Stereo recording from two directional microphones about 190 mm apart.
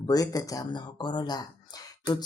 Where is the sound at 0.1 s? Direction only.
20° left (ahead or behind).